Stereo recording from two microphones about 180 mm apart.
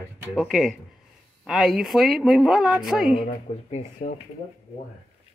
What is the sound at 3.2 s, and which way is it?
Speech, 40° left (ahead or behind).